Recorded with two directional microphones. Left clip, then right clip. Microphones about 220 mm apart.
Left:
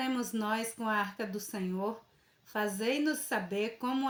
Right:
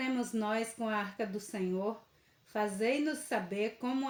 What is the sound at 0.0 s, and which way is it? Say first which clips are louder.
Speech: left 1 dB; 30° left (ahead or behind).